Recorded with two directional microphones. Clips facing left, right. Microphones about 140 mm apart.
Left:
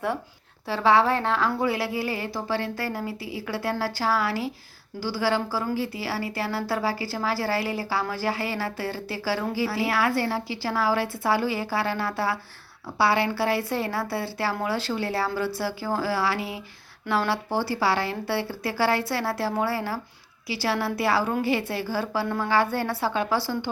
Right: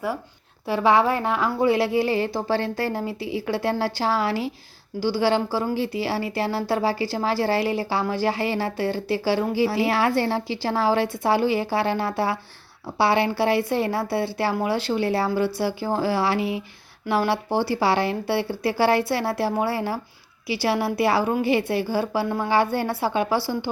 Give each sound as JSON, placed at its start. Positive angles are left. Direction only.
{"t": 0.7, "sound": "speech", "side_deg": -15}